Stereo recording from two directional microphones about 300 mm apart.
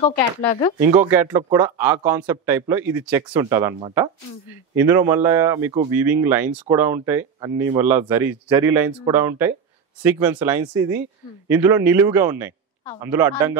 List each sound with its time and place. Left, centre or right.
0.0 s speech: centre
0.8 s a man's voice: centre